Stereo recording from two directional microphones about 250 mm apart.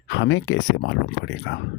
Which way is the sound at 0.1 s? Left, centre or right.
Left.